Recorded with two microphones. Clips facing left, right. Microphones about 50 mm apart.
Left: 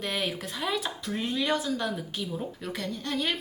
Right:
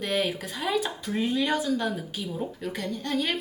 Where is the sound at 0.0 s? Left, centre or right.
Centre.